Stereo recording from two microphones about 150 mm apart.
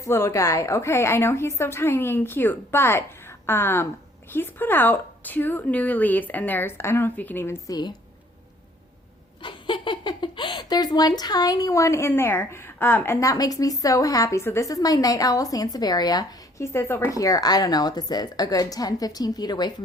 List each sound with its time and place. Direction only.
0.0 s a woman's voice: 20° left (ahead or behind)
9.4 s speech: 35° left (ahead or behind)